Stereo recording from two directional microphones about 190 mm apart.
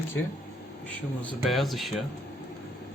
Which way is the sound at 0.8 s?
5° left (ahead or behind).